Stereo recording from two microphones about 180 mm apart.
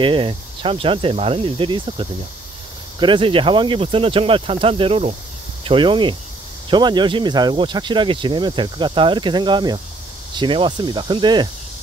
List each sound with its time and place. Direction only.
0.0 s speech: 30° right (ahead or behind)